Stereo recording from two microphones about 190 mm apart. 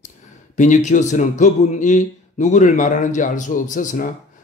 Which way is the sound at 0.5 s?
40° left (ahead or behind).